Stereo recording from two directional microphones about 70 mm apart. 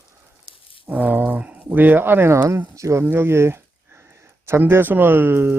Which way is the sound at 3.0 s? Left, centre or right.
Right.